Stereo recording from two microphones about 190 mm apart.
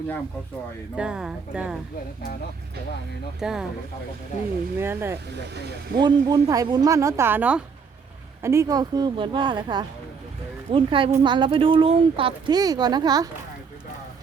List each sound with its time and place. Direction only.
0.9 s speech: 5° right (ahead or behind)
3.4 s speech: centre (ahead or behind)
4.8 s speech: 10° right (ahead or behind)
6.0 s speech: 20° right (ahead or behind)